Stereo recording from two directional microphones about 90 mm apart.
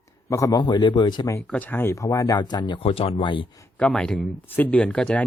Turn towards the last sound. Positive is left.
turn(degrees=10)  # may be behind; listen again after turning